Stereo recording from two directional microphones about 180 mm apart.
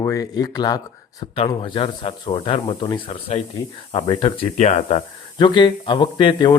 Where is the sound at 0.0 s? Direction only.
20° left (ahead or behind); by 5.0 s 40° left (ahead or behind).